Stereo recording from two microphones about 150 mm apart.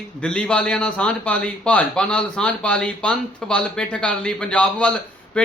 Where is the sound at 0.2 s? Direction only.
5° left (ahead or behind).